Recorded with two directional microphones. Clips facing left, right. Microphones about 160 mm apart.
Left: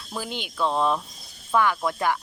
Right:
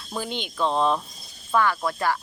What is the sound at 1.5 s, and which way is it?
Speech, 15° left (ahead or behind).